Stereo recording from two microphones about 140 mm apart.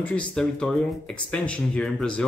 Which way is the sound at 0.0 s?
10° left (ahead or behind).